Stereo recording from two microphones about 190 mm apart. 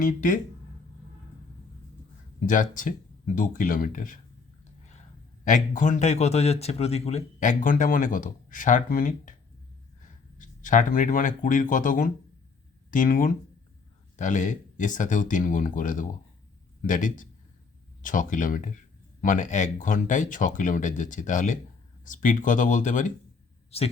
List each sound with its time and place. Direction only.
0.0 s speech: 45° left (ahead or behind)
2.5 s speech: 45° left (ahead or behind)
5.5 s a man's voice: 40° left (ahead or behind)